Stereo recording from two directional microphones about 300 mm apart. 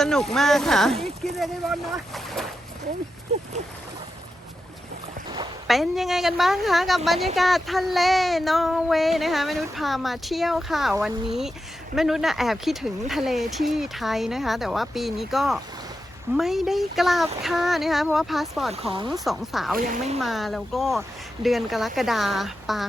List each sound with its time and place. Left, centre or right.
0.0 s child singing: centre
5.6 s child singing: centre
18.7 s speech: centre
19.2 s child singing: centre